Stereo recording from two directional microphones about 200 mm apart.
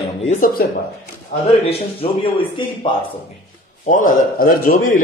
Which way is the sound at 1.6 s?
30° left (ahead or behind).